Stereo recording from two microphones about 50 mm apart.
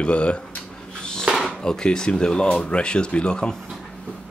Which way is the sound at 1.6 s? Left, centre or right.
Centre.